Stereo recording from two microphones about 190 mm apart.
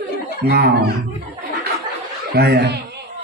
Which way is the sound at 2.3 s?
55° right (ahead or behind).